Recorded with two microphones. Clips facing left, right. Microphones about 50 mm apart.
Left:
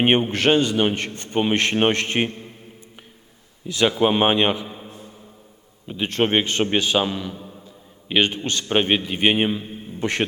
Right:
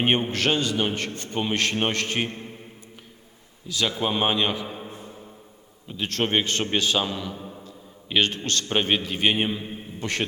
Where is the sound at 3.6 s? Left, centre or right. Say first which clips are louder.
Left 7 dB; left.